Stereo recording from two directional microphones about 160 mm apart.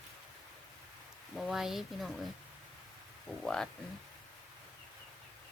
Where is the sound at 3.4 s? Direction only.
5° left (ahead or behind).